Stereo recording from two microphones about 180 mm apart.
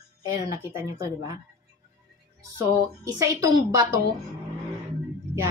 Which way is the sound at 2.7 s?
20° right (ahead or behind).